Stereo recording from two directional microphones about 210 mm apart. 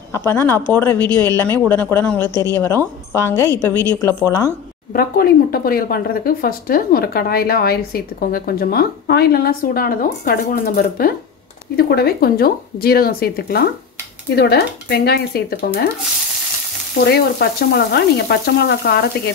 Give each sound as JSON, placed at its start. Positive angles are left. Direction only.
{"t": 0.1, "sound": "a woman's voice", "side_deg": 10}
{"t": 4.9, "sound": "speech", "side_deg": 45}
{"t": 17.1, "sound": "speech", "side_deg": 50}